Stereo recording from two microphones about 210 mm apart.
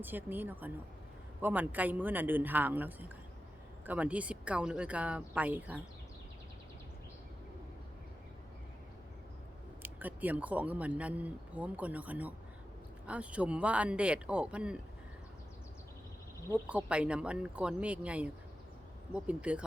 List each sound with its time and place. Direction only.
0.0 s speech: 10° right (ahead or behind)
9.8 s speech: 10° right (ahead or behind)
16.5 s speech: 5° right (ahead or behind)